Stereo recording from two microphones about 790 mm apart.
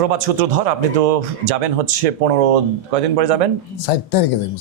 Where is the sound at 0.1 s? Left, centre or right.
Right.